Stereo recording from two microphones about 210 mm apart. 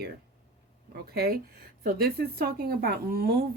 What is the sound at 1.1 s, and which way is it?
Speech, 45° right (ahead or behind).